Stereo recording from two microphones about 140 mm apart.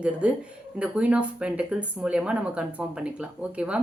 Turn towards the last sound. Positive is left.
turn(degrees=-10)  # may be behind; listen again after turning